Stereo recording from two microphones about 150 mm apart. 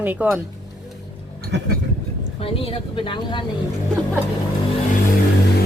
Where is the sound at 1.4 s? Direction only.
90° right.